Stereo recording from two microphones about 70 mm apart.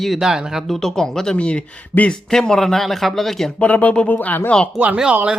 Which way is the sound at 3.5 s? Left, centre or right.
Centre.